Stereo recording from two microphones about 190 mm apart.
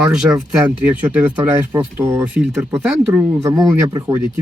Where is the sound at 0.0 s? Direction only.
5° right (ahead or behind).